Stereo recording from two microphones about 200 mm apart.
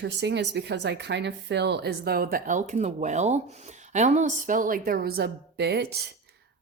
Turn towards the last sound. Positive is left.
turn(degrees=-55)  # may be behind; listen again after turning